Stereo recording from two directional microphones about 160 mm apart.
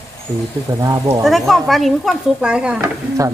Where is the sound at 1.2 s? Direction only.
Centre (ahead or behind).